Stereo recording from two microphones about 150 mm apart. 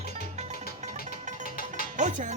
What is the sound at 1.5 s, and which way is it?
Music, 70° left (ahead or behind).